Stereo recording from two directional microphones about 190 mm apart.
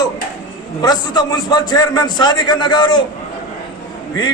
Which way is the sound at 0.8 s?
20° left (ahead or behind).